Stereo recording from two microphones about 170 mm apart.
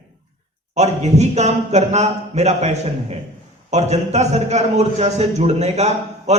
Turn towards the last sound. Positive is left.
turn(degrees=-40)  # may be behind; listen again after turning